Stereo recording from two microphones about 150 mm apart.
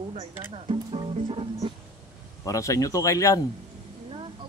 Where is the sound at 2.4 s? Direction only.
20° left (ahead or behind).